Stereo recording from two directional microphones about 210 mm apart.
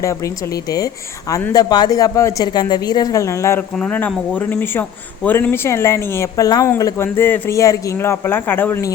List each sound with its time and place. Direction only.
1.3 s speech: 15° left (ahead or behind)